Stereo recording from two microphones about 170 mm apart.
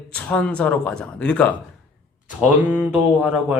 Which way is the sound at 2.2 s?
10° right (ahead or behind).